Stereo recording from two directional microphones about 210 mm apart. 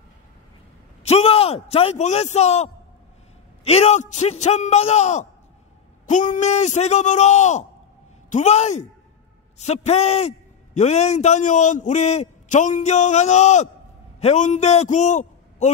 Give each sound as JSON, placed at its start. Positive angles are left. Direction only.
{"t": 1.0, "sound": "a man's voice", "side_deg": 30}